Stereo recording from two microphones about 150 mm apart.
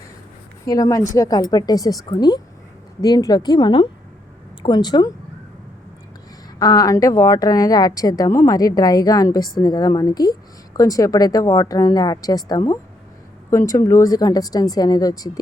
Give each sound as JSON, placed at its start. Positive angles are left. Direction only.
{"t": 0.6, "sound": "a woman's voice", "side_deg": 20}
{"t": 6.6, "sound": "a woman's voice", "side_deg": 25}